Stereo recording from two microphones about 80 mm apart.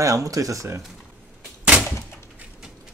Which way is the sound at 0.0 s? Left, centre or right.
Right.